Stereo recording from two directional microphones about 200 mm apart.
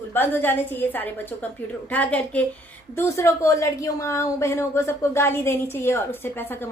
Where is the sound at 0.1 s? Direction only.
10° left (ahead or behind).